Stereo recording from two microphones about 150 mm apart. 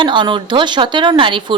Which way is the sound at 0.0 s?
30° right (ahead or behind).